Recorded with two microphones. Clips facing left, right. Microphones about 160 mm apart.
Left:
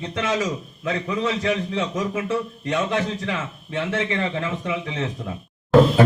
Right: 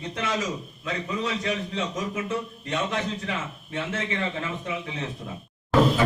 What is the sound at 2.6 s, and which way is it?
A man's voice, 80° left.